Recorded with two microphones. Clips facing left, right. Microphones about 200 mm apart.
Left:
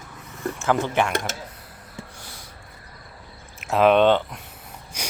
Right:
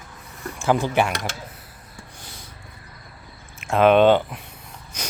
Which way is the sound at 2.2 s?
20° right (ahead or behind).